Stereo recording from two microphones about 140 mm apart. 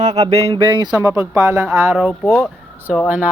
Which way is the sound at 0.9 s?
20° right (ahead or behind).